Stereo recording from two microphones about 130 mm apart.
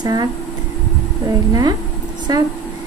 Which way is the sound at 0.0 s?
30° right (ahead or behind).